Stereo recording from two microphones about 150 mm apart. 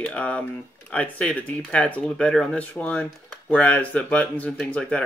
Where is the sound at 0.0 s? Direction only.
10° left (ahead or behind).